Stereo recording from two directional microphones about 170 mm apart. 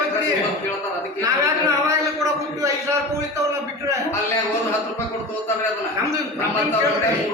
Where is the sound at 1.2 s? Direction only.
20° right (ahead or behind).